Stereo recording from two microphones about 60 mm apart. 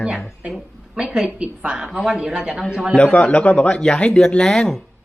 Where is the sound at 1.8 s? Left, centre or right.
Centre.